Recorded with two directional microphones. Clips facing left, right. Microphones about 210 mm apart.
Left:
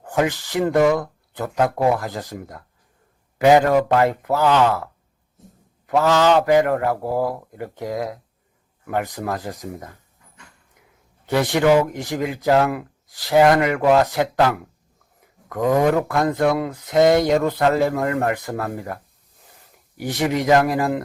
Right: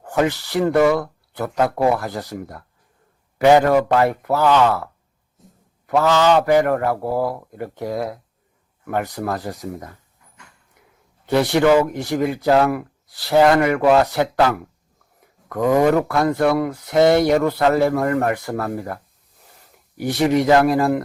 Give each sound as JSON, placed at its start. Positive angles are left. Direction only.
{"t": 0.0, "sound": "speech", "side_deg": 15}
{"t": 6.5, "sound": "speech", "side_deg": 20}
{"t": 11.3, "sound": "speech", "side_deg": 15}
{"t": 15.8, "sound": "speech", "side_deg": 20}
{"t": 20.0, "sound": "speech", "side_deg": 15}